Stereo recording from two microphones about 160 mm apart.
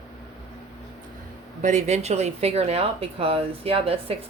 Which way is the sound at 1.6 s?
45° right (ahead or behind).